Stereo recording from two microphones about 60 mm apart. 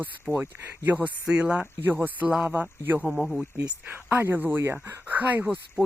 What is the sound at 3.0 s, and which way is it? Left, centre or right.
Speech, centre.